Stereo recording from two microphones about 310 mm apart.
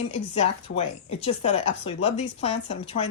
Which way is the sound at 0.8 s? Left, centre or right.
Centre.